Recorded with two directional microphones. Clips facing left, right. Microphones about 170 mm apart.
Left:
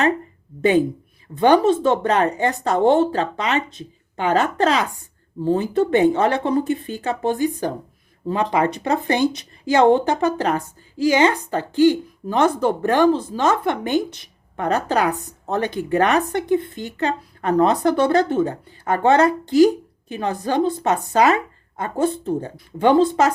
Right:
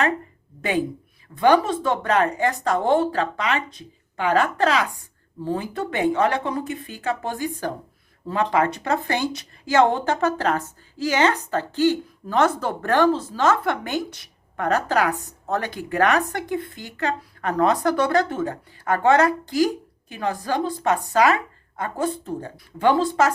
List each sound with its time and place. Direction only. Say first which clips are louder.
1.4 s speech: left 3 dB; 25° left (ahead or behind)